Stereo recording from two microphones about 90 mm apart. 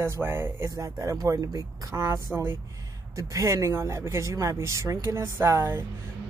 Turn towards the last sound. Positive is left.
turn(degrees=-30)  # may be behind; listen again after turning